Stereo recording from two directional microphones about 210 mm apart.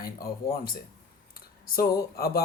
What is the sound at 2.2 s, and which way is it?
Speech, 45° left (ahead or behind).